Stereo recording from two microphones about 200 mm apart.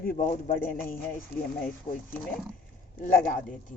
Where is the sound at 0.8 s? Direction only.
10° left (ahead or behind).